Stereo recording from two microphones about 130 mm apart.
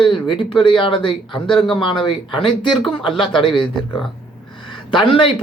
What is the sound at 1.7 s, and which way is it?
A man's voice, 40° left (ahead or behind).